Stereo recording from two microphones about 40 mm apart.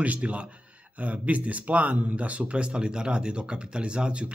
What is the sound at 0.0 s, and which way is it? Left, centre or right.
Speech, right.